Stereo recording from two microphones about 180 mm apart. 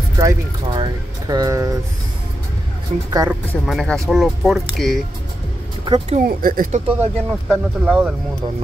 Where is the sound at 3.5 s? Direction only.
5° left (ahead or behind).